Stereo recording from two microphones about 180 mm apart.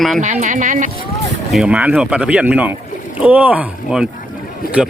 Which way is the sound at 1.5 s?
5° right (ahead or behind).